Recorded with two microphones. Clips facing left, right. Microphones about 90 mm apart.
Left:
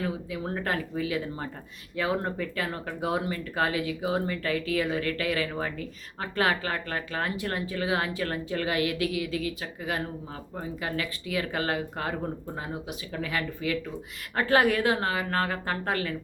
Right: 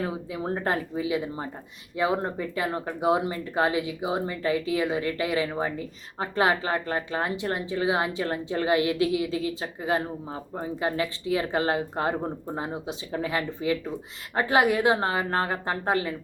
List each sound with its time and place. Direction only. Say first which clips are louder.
0.0 s speech: right 2 dB; 25° right (ahead or behind)